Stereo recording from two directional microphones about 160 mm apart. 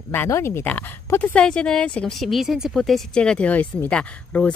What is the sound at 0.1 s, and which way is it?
Speech, 15° left (ahead or behind).